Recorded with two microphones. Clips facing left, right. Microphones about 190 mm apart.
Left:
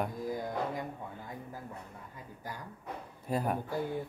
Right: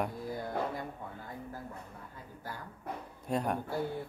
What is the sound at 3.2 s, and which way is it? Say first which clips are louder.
Speech: even; 5° left (ahead or behind).